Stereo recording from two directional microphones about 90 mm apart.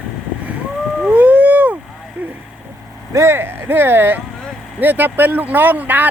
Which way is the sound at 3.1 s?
30° right (ahead or behind).